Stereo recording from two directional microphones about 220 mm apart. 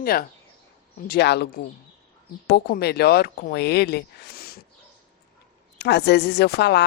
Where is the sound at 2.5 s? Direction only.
45° left (ahead or behind).